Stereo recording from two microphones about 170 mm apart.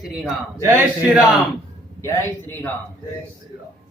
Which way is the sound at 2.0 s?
15° left (ahead or behind).